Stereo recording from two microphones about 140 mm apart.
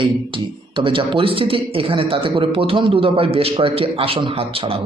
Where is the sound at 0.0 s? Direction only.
35° right (ahead or behind).